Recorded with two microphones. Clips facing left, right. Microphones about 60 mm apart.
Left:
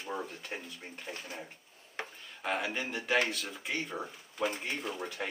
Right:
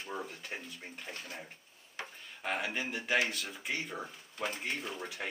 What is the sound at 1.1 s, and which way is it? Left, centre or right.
Speech, left.